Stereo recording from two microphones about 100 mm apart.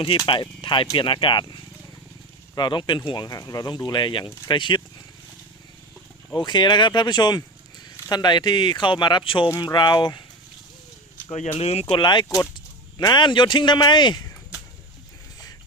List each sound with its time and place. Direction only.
0.3 s speech: 55° left (ahead or behind)
6.3 s speech: 50° left (ahead or behind)
9.6 s speech: 45° left (ahead or behind)
11.5 s speech: 90° left
11.9 s speech: 50° left (ahead or behind)